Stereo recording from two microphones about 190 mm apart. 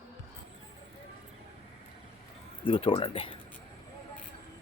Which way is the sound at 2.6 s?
25° left (ahead or behind).